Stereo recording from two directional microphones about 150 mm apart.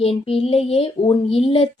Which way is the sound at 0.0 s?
40° left (ahead or behind).